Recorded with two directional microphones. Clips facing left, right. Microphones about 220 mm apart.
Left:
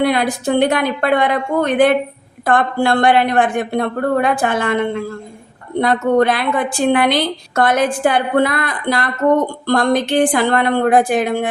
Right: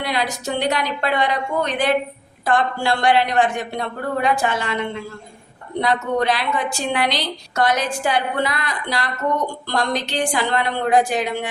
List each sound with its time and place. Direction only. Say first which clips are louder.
0.0 s a woman's voice: left 8 dB; 50° left (ahead or behind)